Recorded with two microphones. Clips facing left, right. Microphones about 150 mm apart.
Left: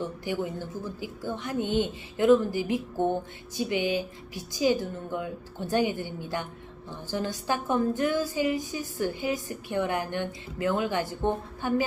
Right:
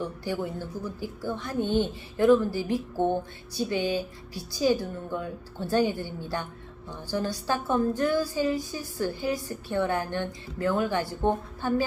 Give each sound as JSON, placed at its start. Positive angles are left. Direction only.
{"t": 0.3, "sound": "a woman's voice", "side_deg": 15}